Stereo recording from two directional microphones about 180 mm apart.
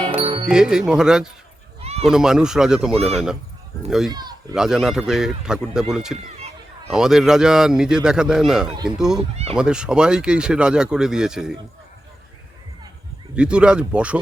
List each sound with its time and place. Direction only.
0.2 s music: 25° right (ahead or behind)
0.4 s speech: 5° right (ahead or behind)
1.8 s a sound: 35° right (ahead or behind)
2.0 s speech: 5° right (ahead or behind)
2.9 s speech: 35° right (ahead or behind)
3.8 s speech: centre (ahead or behind)
4.1 s a sound: 25° right (ahead or behind)
4.5 s speech: 5° right (ahead or behind)
8.7 s speech: 25° right (ahead or behind)
9.6 s speech: 5° right (ahead or behind)
13.3 s speech: 5° right (ahead or behind)